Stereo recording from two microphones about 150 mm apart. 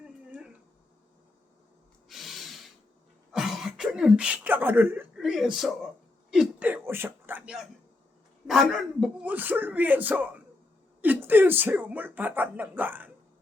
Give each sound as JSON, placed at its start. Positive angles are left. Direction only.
{"t": 2.0, "sound": "snort", "side_deg": 0}
{"t": 3.3, "sound": "throat clearing", "side_deg": -5}
{"t": 5.1, "sound": "speech", "side_deg": -5}
{"t": 9.2, "sound": "speech", "side_deg": -10}